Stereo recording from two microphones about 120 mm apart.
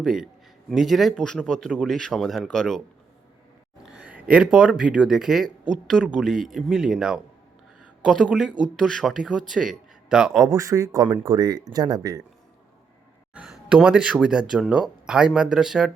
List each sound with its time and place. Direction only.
0.0 s speech: 5° right (ahead or behind)
3.9 s speech: 10° right (ahead or behind)
8.0 s speech: 5° left (ahead or behind)
10.4 s speech: 25° right (ahead or behind)
13.3 s speech: 5° right (ahead or behind)